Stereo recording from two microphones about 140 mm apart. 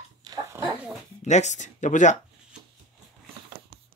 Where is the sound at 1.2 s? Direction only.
55° left (ahead or behind).